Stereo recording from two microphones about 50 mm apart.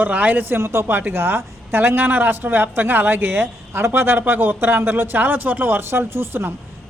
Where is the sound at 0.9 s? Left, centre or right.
Right.